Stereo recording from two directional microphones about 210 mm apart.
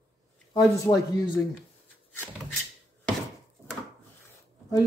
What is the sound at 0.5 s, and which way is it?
Speech, 15° left (ahead or behind).